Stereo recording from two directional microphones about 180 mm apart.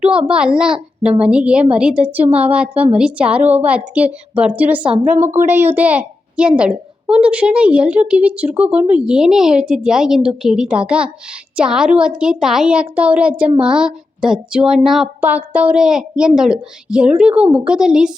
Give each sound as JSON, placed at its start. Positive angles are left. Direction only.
{"t": 0.3, "sound": "a woman's voice", "side_deg": -5}
{"t": 17.4, "sound": "a woman's voice", "side_deg": -30}
{"t": 17.7, "sound": "a woman's voice", "side_deg": -5}